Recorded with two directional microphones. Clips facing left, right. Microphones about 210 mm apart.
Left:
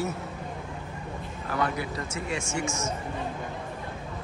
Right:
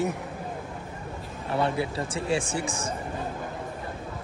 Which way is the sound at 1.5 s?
30° right (ahead or behind).